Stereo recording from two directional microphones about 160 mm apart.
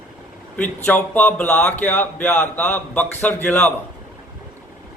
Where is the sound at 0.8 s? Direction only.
10° left (ahead or behind).